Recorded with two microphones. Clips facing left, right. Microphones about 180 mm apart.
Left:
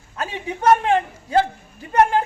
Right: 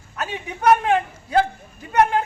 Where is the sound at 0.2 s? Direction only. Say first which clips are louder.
Left 1 dB; 30° left (ahead or behind).